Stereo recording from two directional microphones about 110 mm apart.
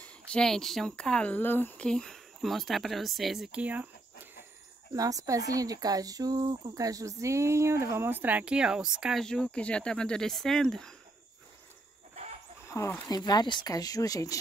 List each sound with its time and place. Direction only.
0.3 s speech: 5° left (ahead or behind)
1.9 s speech: 5° left (ahead or behind)
3.6 s speech: 15° right (ahead or behind)
4.9 s speech: 30° right (ahead or behind); by 9.2 s 5° right (ahead or behind)
9.2 s speech: 5° left (ahead or behind)
12.6 s a sound: 25° left (ahead or behind)
13.1 s speech: 40° left (ahead or behind)